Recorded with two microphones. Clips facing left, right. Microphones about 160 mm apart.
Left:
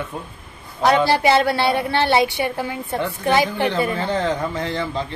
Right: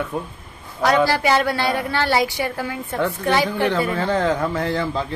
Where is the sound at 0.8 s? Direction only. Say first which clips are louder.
Left 1 dB; 25° left (ahead or behind).